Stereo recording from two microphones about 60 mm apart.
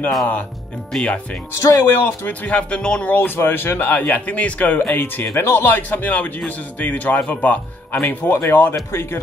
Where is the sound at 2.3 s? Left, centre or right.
Left.